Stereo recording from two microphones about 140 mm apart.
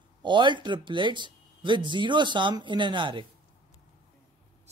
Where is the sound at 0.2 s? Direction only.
35° right (ahead or behind).